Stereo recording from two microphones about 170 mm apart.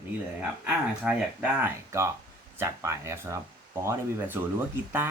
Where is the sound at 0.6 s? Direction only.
5° right (ahead or behind).